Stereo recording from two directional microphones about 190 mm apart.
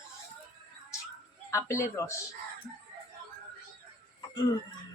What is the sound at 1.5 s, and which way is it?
Speech, 15° left (ahead or behind).